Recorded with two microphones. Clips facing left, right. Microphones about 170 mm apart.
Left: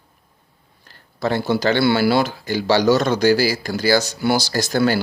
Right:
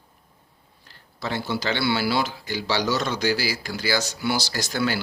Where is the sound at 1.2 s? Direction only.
50° left (ahead or behind).